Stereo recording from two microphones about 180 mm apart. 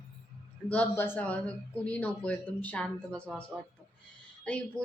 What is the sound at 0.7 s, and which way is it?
Speech, 10° left (ahead or behind).